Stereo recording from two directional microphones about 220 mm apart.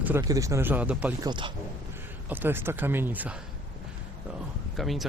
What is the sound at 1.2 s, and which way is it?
Speech, 20° right (ahead or behind).